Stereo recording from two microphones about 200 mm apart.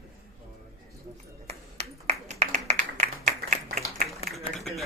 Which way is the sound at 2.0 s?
35° right (ahead or behind).